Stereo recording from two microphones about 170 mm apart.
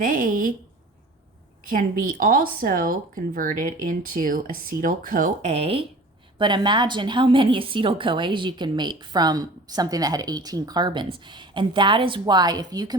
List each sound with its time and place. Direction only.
0.0 s speech: 55° right (ahead or behind)
1.6 s speech: 55° right (ahead or behind); by 5.8 s 35° right (ahead or behind)
6.4 s a woman's voice: 25° right (ahead or behind)